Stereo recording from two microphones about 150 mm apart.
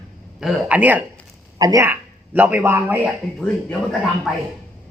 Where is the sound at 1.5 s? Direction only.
25° right (ahead or behind).